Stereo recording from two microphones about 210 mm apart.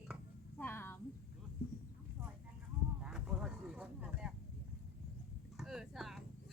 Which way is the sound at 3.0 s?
5° right (ahead or behind).